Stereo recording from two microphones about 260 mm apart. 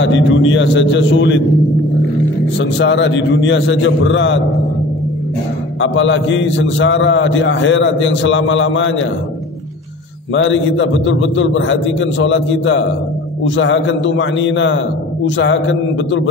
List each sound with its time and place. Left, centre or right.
0.0 s a man's voice: left
2.6 s a man's voice: left
5.8 s a man's voice: left
10.3 s a man's voice: left